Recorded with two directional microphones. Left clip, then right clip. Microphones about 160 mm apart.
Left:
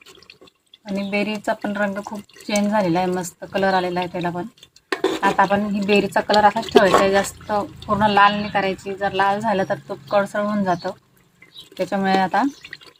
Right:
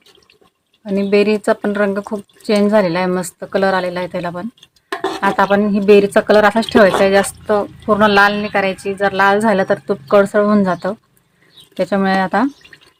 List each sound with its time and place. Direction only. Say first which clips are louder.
0.9 s speech: right 10 dB; 90° right; by 12.5 s 60° right (ahead or behind)